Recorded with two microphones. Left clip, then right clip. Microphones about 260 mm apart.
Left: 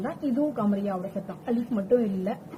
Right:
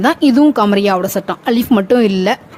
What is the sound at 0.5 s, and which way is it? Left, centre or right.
Speech, right.